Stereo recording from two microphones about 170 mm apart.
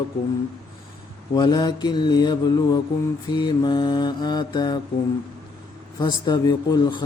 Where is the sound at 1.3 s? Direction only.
25° left (ahead or behind).